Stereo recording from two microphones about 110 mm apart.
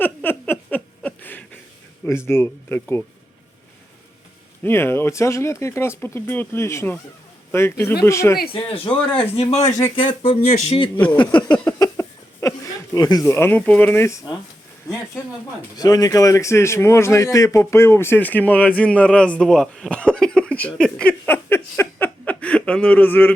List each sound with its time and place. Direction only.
0.0 s a sound: 20° left (ahead or behind)
2.0 s speech: 25° left (ahead or behind)
4.6 s speech: 20° left (ahead or behind)
8.5 s speech: 55° left (ahead or behind); by 9.6 s 75° left (ahead or behind)
9.9 s speech: 50° left (ahead or behind)
10.9 s speech: 15° left (ahead or behind)
11.6 s a sound: 25° left (ahead or behind)
13.3 s speech: 15° left (ahead or behind)
15.7 s a man's voice: 35° left (ahead or behind); by 23.3 s 15° left (ahead or behind)